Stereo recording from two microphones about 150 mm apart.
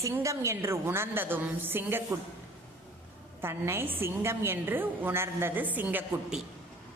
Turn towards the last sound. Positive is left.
turn(degrees=-10)  # may be behind; listen again after turning